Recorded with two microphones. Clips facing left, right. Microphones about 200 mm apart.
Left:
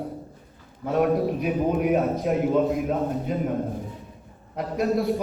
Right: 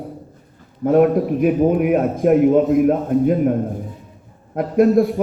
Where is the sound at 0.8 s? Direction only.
50° right (ahead or behind).